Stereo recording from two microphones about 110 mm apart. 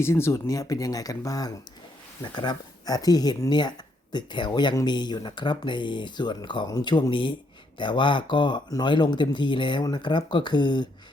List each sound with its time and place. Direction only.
0.0 s speech: 25° left (ahead or behind); by 10.8 s 45° left (ahead or behind)